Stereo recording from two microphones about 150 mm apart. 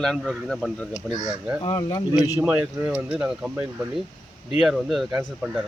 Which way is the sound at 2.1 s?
10° right (ahead or behind).